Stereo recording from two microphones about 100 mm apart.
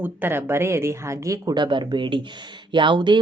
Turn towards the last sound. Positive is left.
turn(degrees=-50)  # may be behind; listen again after turning